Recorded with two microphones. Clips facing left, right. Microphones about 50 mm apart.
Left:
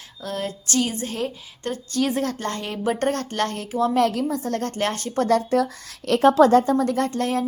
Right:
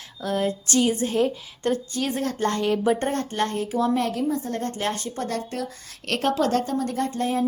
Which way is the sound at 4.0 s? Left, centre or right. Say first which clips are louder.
Left 3 dB; left.